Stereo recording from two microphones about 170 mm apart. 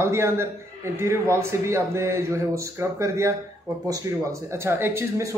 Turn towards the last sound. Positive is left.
turn(degrees=-15)  # may be behind; listen again after turning